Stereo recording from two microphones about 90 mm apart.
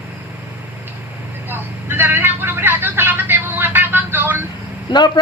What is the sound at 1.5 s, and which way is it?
Vehicle, 25° right (ahead or behind).